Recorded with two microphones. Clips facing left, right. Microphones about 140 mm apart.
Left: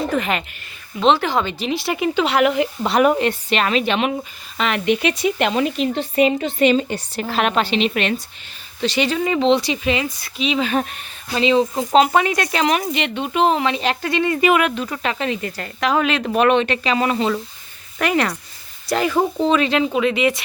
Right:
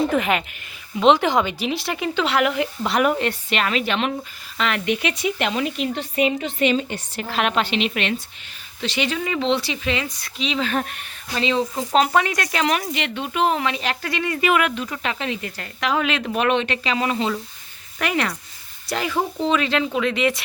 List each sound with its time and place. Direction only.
0.1 s speech: 5° right (ahead or behind)
1.7 s speech: centre (ahead or behind)
2.0 s speech: 15° left (ahead or behind)
5.0 s speech: 35° left (ahead or behind); by 10.1 s 15° left (ahead or behind)
10.2 s speech: 5° left (ahead or behind); by 14.7 s 25° left (ahead or behind)
14.8 s speech: 40° left (ahead or behind)
18.0 s speech: 40° left (ahead or behind)
19.7 s speech: 10° left (ahead or behind)